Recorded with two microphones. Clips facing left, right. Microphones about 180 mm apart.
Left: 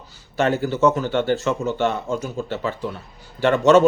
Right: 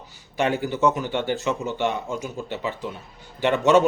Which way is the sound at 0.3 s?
15° right (ahead or behind).